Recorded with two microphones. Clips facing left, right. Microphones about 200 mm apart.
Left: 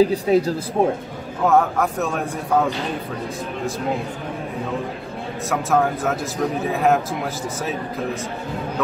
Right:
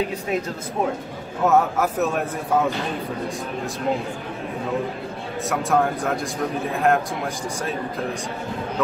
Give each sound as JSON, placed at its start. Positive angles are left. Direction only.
{"t": 0.0, "sound": "speech", "side_deg": 35}
{"t": 1.4, "sound": "a man's voice", "side_deg": -5}
{"t": 5.5, "sound": "a man's voice", "side_deg": 0}